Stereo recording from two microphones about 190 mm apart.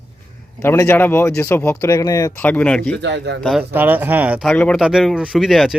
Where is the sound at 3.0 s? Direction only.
65° right (ahead or behind).